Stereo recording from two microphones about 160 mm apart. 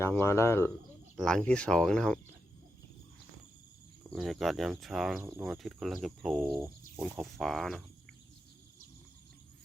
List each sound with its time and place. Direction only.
0.0 s speech: 15° left (ahead or behind)
1.1 s speech: 5° left (ahead or behind)
4.1 s speech: centre (ahead or behind)
6.4 s speech: 15° right (ahead or behind)
7.0 s speech: centre (ahead or behind)